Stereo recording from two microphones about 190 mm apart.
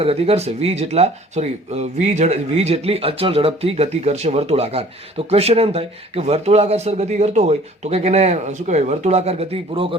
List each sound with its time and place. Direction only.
0.0 s speech: 30° right (ahead or behind)